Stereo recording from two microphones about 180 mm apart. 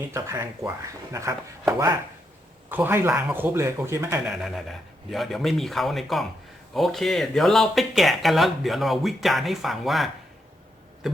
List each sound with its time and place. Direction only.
0.1 s a man's voice: 15° right (ahead or behind)
2.6 s a man's voice: 10° right (ahead or behind)
4.3 s speech: centre (ahead or behind)
11.0 s tick: centre (ahead or behind)